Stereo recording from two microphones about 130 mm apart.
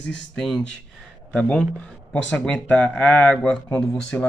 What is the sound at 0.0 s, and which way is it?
Speech, 5° left (ahead or behind).